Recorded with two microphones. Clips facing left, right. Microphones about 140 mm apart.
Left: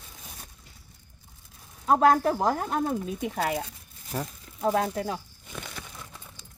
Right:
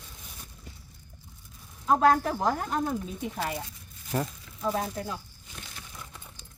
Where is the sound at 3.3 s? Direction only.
70° left (ahead or behind).